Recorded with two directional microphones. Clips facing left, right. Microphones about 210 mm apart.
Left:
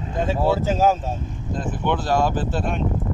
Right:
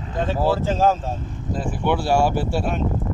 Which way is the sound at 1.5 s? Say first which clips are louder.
Right 1 dB; 10° right (ahead or behind).